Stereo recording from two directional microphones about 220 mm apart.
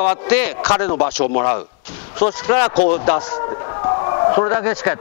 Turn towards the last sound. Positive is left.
turn(degrees=10)  # may be behind; listen again after turning